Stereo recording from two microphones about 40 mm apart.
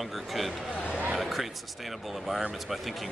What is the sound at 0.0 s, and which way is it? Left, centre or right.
Speech, centre.